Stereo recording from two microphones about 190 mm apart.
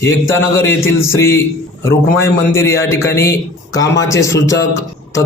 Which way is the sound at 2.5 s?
15° left (ahead or behind).